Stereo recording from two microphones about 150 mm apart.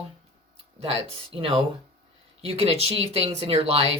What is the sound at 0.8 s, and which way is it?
Speech, 40° right (ahead or behind).